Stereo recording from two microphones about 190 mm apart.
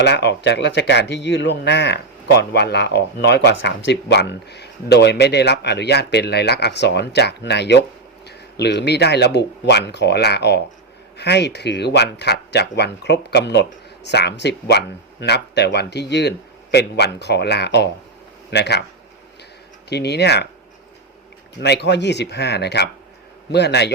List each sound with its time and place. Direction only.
0.0 s speech: 65° left (ahead or behind)
19.9 s speech: 60° left (ahead or behind)
21.6 s speech: 60° left (ahead or behind)